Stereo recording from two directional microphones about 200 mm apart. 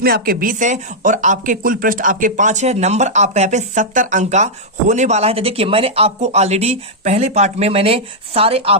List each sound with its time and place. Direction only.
0.0 s speech: 45° right (ahead or behind); by 8.8 s 30° right (ahead or behind)